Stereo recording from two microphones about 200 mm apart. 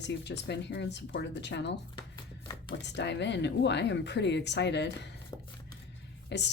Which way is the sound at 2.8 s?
60° left (ahead or behind).